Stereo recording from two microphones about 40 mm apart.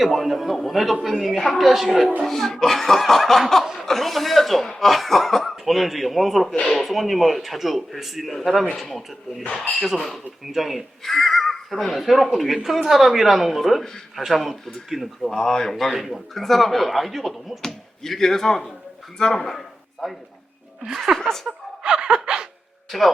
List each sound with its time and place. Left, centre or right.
0.0 s speech: centre
3.6 s chuckle: centre
3.8 s speech: centre
10.4 s speech: centre
15.3 s speech: centre
16.0 s a man's voice: centre
20.8 s speech: right
21.2 s speech: centre
21.8 s a sound: right
22.9 s speech: centre